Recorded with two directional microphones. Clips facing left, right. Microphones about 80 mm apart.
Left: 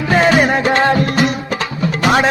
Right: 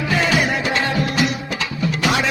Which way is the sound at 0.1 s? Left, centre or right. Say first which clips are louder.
Left 8 dB; left.